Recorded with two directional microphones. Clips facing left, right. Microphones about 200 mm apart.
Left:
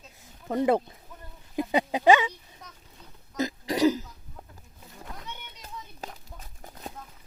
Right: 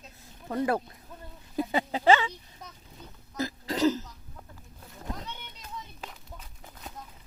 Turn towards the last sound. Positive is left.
turn(degrees=40)  # may be behind; listen again after turning